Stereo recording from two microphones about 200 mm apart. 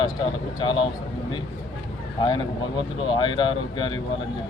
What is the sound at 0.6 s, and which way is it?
Speech, 25° left (ahead or behind).